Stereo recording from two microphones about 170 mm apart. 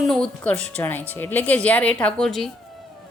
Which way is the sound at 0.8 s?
10° left (ahead or behind).